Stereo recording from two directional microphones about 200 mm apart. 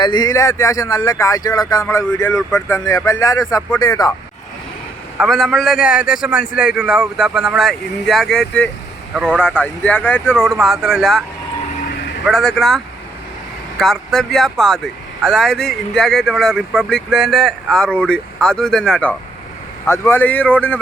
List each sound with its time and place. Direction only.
0.0 s speech: 20° left (ahead or behind)
5.1 s speech: centre (ahead or behind)
12.2 s speech: centre (ahead or behind)